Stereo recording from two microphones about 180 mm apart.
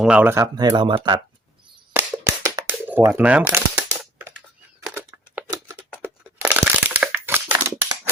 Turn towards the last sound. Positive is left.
turn(degrees=-10)  # may be behind; listen again after turning